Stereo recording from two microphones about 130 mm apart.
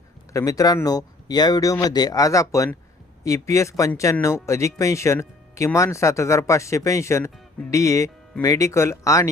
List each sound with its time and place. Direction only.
0.3 s speech: 25° left (ahead or behind)